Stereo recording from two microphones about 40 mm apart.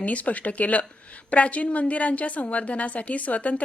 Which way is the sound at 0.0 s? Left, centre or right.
Left.